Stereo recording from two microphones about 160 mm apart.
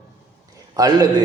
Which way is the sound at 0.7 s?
20° right (ahead or behind).